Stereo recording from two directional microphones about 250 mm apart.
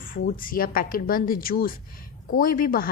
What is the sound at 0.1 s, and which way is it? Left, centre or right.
A woman's voice, left.